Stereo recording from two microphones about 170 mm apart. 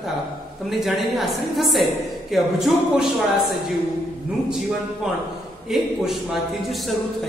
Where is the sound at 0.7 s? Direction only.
Centre (ahead or behind).